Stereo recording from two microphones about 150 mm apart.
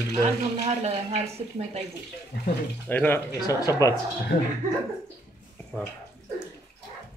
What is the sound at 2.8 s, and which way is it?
Speech, 10° left (ahead or behind).